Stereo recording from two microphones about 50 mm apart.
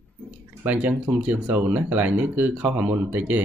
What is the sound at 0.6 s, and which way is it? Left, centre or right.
Speech, right.